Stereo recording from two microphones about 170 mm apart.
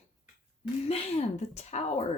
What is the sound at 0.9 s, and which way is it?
Speech, 35° left (ahead or behind).